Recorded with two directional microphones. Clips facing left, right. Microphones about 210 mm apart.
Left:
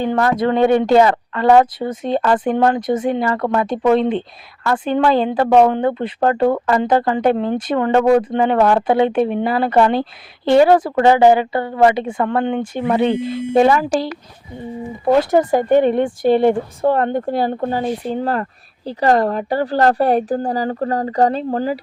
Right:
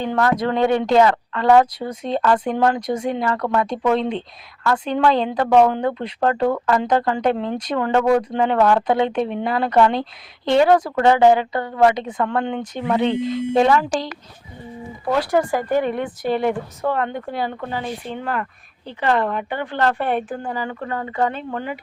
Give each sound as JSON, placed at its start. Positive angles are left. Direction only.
{"t": 0.0, "sound": "speech", "side_deg": 10}
{"t": 5.5, "sound": "speech", "side_deg": 25}
{"t": 5.7, "sound": "speech", "side_deg": 5}
{"t": 15.0, "sound": "speech", "side_deg": 25}